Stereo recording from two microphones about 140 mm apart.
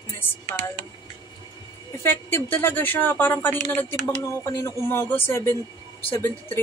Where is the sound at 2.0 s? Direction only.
15° left (ahead or behind).